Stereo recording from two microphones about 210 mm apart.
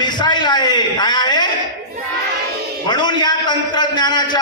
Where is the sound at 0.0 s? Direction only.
20° left (ahead or behind).